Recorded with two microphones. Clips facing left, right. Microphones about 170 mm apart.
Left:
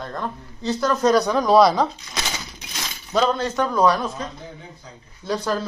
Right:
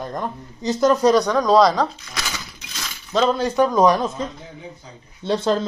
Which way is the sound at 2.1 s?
25° left (ahead or behind).